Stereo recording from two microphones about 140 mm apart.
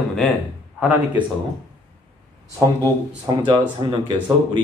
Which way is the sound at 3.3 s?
30° right (ahead or behind).